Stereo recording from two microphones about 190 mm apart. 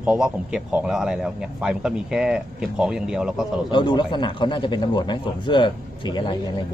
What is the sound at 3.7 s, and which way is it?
Speech, 25° left (ahead or behind).